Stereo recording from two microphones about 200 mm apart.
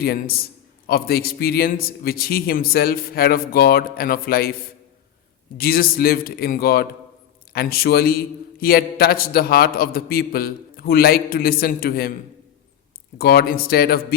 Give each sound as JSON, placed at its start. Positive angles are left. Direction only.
{"t": 0.0, "sound": "a man's voice", "side_deg": 50}
{"t": 5.5, "sound": "a man's voice", "side_deg": 50}
{"t": 13.1, "sound": "a man's voice", "side_deg": 50}